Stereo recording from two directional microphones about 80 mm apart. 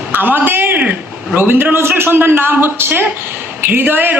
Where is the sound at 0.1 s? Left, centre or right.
Right.